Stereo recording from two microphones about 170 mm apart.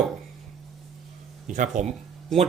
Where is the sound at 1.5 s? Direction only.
45° right (ahead or behind).